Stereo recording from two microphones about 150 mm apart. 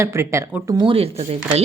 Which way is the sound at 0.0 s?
20° right (ahead or behind).